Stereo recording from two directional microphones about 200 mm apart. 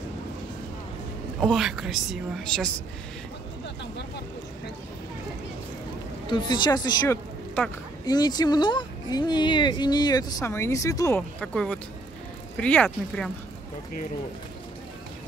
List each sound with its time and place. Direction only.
1.4 s a woman's voice: centre (ahead or behind)
6.2 s speech: 25° left (ahead or behind); by 13.3 s 5° left (ahead or behind)